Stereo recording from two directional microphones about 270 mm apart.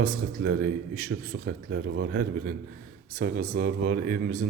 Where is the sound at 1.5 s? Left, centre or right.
Right.